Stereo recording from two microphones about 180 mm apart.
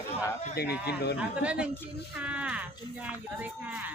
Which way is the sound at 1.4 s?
5° right (ahead or behind).